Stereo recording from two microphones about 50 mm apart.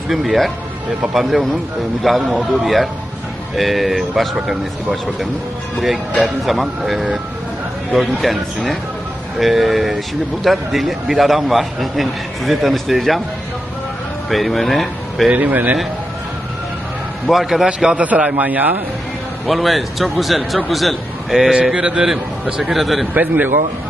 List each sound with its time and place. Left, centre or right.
0.1 s a man's voice: centre
14.3 s speech: centre
15.3 s speech: right
17.2 s a man's voice: centre
17.9 s speech: right
19.5 s a man's voice: centre
22.7 s a man's voice: centre
23.1 s speech: right